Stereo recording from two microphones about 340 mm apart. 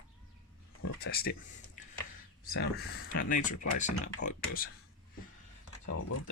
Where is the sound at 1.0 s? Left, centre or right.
Left.